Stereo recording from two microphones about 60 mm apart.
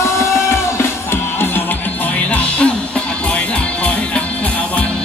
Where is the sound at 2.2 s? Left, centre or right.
Left.